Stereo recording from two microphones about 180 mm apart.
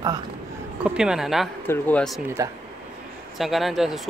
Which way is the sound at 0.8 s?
5° right (ahead or behind).